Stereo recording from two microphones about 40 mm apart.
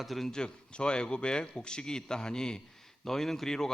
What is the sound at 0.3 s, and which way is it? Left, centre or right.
A man's voice, left.